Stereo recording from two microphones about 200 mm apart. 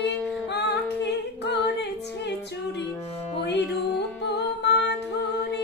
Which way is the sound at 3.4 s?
60° left (ahead or behind).